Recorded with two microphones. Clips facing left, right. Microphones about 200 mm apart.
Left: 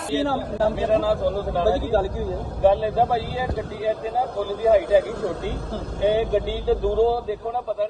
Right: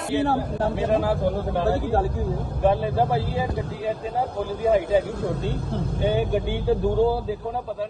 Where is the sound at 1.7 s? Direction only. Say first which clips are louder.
Left 2 dB; 60° right (ahead or behind).